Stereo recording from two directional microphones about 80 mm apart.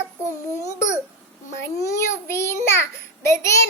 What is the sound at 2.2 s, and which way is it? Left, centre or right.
Speech, left.